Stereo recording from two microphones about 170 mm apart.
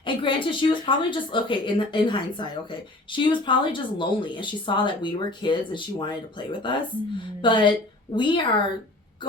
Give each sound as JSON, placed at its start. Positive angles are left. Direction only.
{"t": 0.0, "sound": "a woman's voice", "side_deg": 30}